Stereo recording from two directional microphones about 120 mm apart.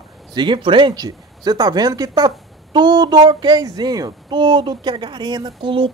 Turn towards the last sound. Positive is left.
turn(degrees=-45)  # may be behind; listen again after turning